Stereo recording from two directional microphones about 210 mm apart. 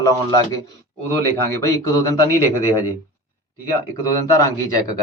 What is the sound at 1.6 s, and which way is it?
Speech, 15° left (ahead or behind).